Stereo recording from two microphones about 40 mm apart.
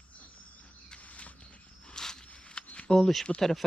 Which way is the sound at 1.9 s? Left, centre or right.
Centre.